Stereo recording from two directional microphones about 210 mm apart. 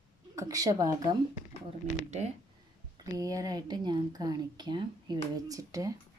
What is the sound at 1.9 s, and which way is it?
Speech, 35° left (ahead or behind).